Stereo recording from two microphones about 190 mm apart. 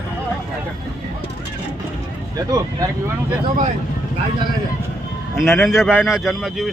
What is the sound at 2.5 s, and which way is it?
Speech, 20° right (ahead or behind).